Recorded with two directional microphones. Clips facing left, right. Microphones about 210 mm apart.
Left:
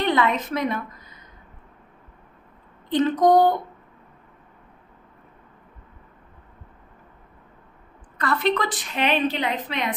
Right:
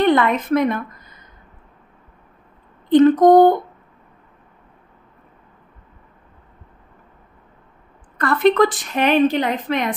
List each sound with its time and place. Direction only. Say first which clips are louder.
0.0 s speech: right 6 dB; 50° right (ahead or behind)
2.9 s a woman's voice: right 7 dB; 55° right (ahead or behind)
8.2 s a woman's voice: right 8 dB; 50° right (ahead or behind)